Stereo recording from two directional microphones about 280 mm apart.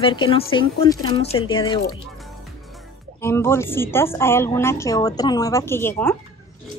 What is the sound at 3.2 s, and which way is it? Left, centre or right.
A woman's voice, centre.